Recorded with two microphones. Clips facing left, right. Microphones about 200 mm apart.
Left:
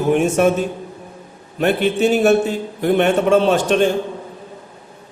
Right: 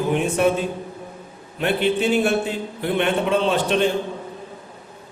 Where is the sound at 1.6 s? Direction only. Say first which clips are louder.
Left 4 dB; 45° left (ahead or behind).